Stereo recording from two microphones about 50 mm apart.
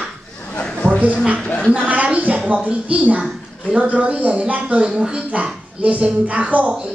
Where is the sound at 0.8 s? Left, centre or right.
Right.